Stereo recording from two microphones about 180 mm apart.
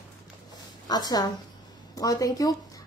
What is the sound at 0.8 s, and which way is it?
Speech, 20° left (ahead or behind).